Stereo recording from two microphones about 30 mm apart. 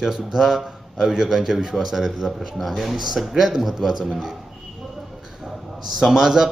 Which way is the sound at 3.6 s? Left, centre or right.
Centre.